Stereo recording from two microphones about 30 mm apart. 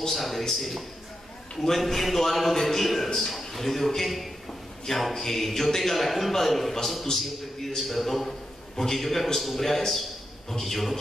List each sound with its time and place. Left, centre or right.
0.0 s a man's voice: centre
4.5 s a sound: centre
5.0 s a man's voice: centre